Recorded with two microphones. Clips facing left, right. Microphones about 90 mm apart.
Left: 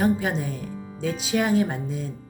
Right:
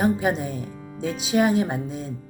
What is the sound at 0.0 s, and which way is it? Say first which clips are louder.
Speech: right 1 dB; 25° right (ahead or behind).